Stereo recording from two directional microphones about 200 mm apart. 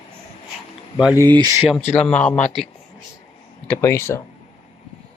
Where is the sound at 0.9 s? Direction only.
5° right (ahead or behind).